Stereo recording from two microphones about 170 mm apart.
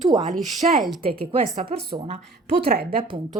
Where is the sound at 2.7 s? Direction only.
65° right (ahead or behind).